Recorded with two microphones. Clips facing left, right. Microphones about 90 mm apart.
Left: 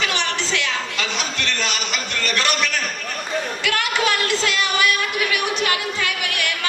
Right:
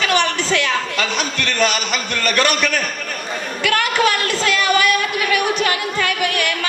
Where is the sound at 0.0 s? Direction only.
50° right (ahead or behind).